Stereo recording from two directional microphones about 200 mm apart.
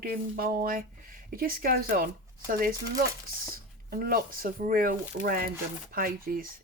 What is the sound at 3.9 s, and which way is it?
Speech, 50° right (ahead or behind).